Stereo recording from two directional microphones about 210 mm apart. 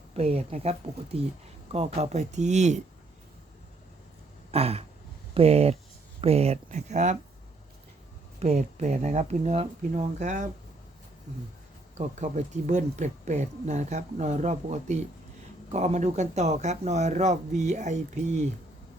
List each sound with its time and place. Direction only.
0.2 s speech: 30° right (ahead or behind)
4.5 s speech: 30° right (ahead or behind)
8.4 s speech: 35° right (ahead or behind)